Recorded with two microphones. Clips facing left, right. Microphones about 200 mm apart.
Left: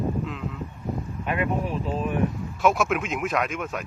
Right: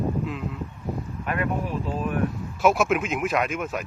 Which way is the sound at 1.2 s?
15° left (ahead or behind).